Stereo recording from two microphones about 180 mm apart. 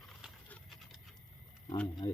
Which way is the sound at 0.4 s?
5° left (ahead or behind).